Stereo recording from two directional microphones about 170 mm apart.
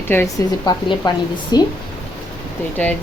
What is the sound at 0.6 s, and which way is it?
Speech, 25° left (ahead or behind).